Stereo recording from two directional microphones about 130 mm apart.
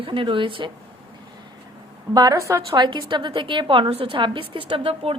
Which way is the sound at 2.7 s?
35° right (ahead or behind).